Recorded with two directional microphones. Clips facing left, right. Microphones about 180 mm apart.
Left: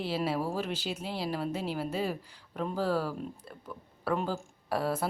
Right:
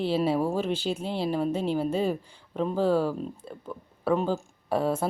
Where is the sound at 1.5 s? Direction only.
5° left (ahead or behind).